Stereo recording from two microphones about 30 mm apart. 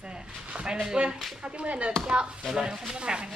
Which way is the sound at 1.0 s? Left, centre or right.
Right.